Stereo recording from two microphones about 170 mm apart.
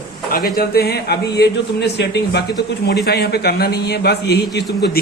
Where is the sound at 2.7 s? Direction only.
70° left (ahead or behind).